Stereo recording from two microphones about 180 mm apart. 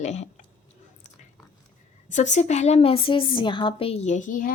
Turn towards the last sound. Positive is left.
turn(degrees=50)  # may be behind; listen again after turning